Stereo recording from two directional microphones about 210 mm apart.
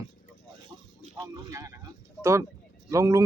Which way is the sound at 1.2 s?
15° right (ahead or behind).